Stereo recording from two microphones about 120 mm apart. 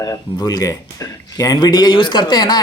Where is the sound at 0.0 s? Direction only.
30° left (ahead or behind).